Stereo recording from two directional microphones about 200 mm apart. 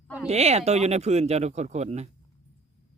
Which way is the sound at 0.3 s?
30° right (ahead or behind).